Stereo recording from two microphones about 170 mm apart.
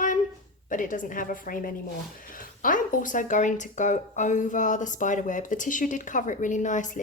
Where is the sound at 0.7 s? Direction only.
50° left (ahead or behind).